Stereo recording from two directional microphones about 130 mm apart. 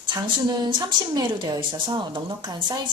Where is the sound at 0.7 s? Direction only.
35° right (ahead or behind).